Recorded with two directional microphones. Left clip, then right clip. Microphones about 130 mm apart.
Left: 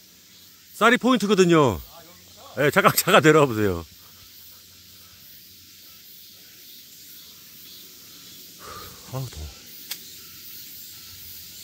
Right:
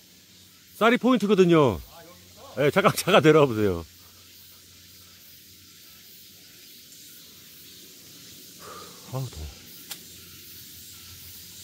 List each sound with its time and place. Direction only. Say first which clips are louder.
0.7 s speech: left 3 dB; 10° left (ahead or behind)
8.5 s snake: left 3 dB; 15° left (ahead or behind)
9.9 s a sound: left 5 dB; 40° right (ahead or behind)